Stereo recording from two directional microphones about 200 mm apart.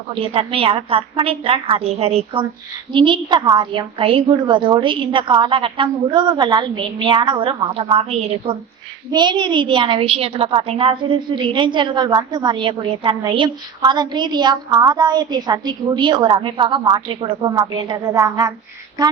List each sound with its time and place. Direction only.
0.1 s a child's voice: 30° right (ahead or behind)